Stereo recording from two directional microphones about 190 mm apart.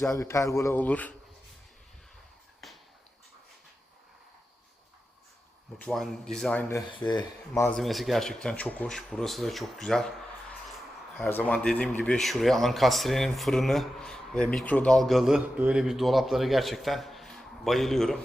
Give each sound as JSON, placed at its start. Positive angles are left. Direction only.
{"t": 0.0, "sound": "a man's voice", "side_deg": 15}
{"t": 5.8, "sound": "a man's voice", "side_deg": 0}
{"t": 6.9, "sound": "speech", "side_deg": 25}
{"t": 7.7, "sound": "a man's voice", "side_deg": 0}
{"t": 11.3, "sound": "a man's voice", "side_deg": 10}